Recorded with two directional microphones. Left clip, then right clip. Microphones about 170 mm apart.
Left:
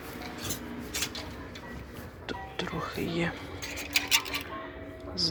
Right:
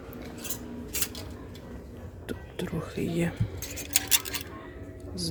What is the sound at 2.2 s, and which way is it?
Speech, 60° right (ahead or behind).